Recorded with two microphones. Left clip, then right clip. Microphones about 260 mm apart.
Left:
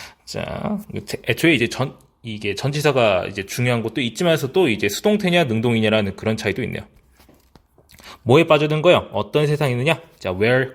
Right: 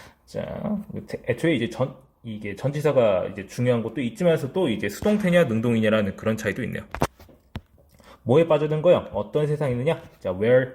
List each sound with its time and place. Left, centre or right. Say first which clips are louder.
0.3 s speech: left 4 dB; left
8.3 s speech: left 5 dB; left